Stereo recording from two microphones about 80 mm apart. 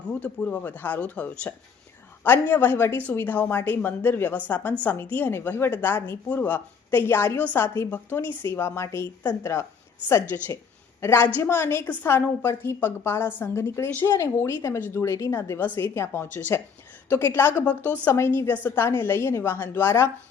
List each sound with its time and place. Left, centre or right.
0.1 s speech: centre
8.3 s speech: right
8.5 s a woman's voice: left
14.8 s speech: left
15.0 s a woman's voice: left